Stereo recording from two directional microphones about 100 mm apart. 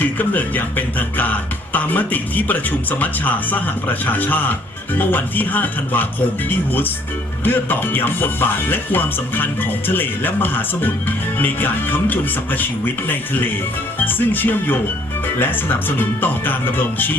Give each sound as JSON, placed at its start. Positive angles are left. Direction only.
{"t": 0.0, "sound": "speech", "side_deg": 15}